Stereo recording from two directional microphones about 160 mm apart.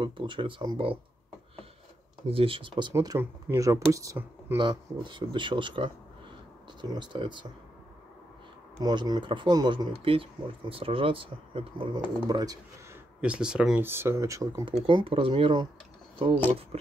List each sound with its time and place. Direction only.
0.0 s speech: 30° right (ahead or behind)
2.2 s speech: 35° right (ahead or behind)
2.9 s speech: 20° right (ahead or behind)
4.6 s speech: 30° right (ahead or behind)
8.7 s speech: 25° right (ahead or behind)
13.2 s speech: 5° right (ahead or behind)
14.7 s speech: 35° right (ahead or behind)